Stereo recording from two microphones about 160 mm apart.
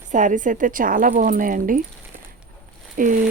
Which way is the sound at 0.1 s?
50° right (ahead or behind).